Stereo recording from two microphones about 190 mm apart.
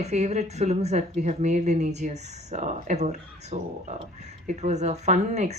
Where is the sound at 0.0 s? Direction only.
35° right (ahead or behind).